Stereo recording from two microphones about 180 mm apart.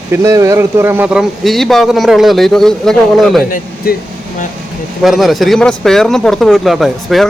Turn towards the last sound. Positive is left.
turn(degrees=0)  # may be behind; listen again after turning